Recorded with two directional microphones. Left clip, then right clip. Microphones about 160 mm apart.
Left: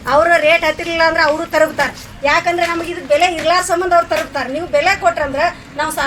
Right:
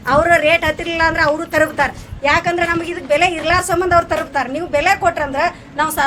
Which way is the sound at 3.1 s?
5° right (ahead or behind).